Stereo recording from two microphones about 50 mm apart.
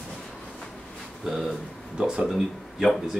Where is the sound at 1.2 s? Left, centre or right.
Centre.